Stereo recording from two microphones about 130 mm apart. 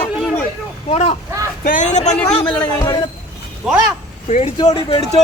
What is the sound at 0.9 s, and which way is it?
Speech, 60° left (ahead or behind).